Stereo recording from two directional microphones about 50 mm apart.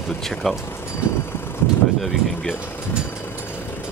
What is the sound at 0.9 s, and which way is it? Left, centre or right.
Vehicle, left.